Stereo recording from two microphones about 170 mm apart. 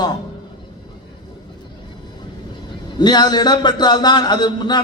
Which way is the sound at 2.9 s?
25° left (ahead or behind).